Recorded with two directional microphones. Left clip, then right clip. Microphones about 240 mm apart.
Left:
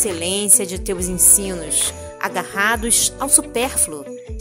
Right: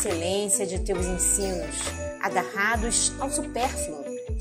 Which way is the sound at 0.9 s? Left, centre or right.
Centre.